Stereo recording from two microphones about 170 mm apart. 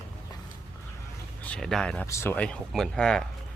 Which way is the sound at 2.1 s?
15° left (ahead or behind).